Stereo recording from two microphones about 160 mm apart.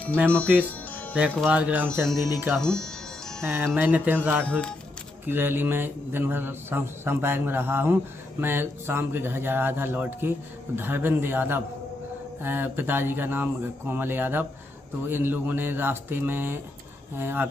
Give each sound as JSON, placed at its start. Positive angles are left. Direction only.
{"t": 0.0, "sound": "speech", "side_deg": -10}
{"t": 1.4, "sound": "a man's voice", "side_deg": -10}
{"t": 2.5, "sound": "music", "side_deg": 5}
{"t": 3.4, "sound": "a man's voice", "side_deg": -15}
{"t": 4.5, "sound": "speech", "side_deg": 5}
{"t": 5.2, "sound": "a man's voice", "side_deg": -10}